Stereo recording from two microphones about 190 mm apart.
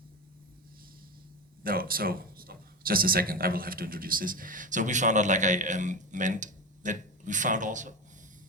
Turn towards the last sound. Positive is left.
turn(degrees=-40)  # may be behind; listen again after turning